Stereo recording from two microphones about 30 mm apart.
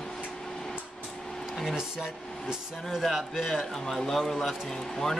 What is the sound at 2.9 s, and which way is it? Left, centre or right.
Speech, centre.